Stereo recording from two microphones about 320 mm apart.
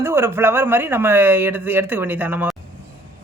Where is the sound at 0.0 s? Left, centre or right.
Centre.